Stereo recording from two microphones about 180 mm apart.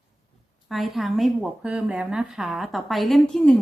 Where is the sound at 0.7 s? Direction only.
Centre (ahead or behind).